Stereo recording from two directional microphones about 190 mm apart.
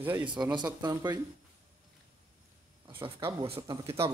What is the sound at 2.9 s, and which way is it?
Speech, 25° right (ahead or behind).